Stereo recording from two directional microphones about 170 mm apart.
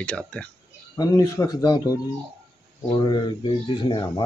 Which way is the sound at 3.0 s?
25° left (ahead or behind).